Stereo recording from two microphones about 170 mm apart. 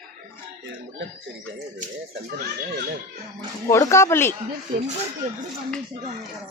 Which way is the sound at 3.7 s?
15° left (ahead or behind).